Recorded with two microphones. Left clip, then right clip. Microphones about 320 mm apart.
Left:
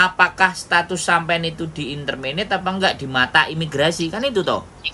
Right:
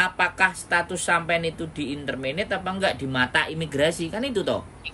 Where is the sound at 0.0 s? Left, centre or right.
Centre.